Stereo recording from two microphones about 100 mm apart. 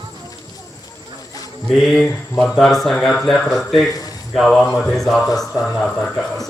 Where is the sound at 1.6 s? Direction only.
5° left (ahead or behind).